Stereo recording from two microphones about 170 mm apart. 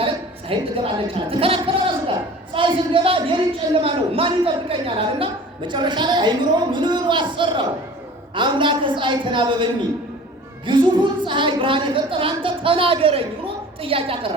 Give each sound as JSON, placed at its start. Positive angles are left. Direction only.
{"t": 0.5, "sound": "a woman's voice", "side_deg": -35}
{"t": 10.7, "sound": "a woman's voice", "side_deg": -30}